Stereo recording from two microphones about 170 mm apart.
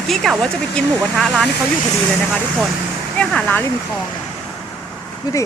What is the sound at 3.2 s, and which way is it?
Speech, 5° left (ahead or behind).